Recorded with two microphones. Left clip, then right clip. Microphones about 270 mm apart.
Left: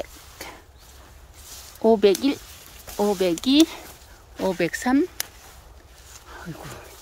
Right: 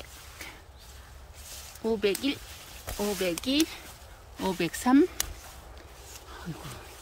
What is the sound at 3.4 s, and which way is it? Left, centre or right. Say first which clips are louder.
Speech: left 11 dB; centre.